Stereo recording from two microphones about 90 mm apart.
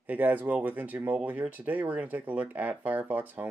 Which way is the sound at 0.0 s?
15° right (ahead or behind).